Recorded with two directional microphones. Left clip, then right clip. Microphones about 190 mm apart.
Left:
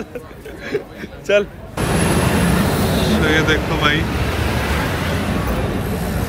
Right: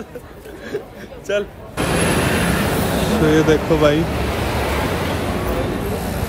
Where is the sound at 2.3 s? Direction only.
Centre (ahead or behind).